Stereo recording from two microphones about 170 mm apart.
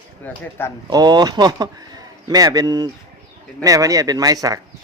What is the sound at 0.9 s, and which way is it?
Speech, 25° right (ahead or behind).